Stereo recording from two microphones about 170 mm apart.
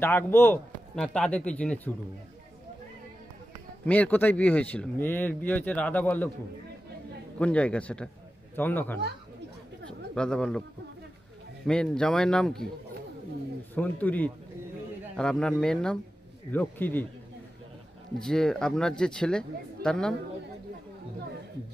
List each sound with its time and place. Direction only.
0.0 s speech: 15° left (ahead or behind)
3.8 s speech: 10° left (ahead or behind)
7.3 s speech: 5° left (ahead or behind)
9.8 s a sound: 5° left (ahead or behind)
11.6 s speech: 5° left (ahead or behind)
13.7 s speech: 10° left (ahead or behind)
18.2 s speech: 5° left (ahead or behind)